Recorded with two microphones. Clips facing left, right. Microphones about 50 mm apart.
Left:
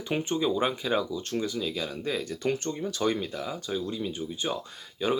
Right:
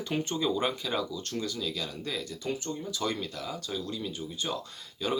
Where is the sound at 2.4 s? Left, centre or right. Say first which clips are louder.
Left 5 dB; left.